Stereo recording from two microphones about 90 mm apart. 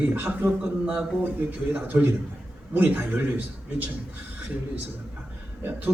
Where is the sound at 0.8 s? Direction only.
10° right (ahead or behind).